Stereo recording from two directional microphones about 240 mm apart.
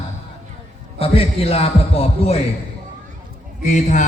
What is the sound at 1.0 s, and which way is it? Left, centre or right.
A man's voice, left.